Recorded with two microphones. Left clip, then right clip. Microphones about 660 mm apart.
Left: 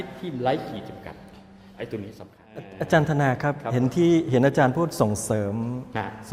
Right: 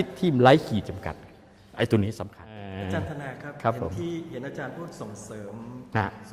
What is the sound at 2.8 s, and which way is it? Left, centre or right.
A man's voice, left.